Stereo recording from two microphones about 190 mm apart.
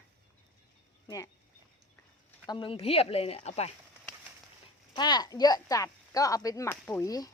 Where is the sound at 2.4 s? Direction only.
25° left (ahead or behind).